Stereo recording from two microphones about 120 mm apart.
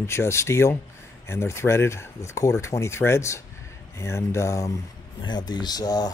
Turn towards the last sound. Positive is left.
turn(degrees=35)  # may be behind; listen again after turning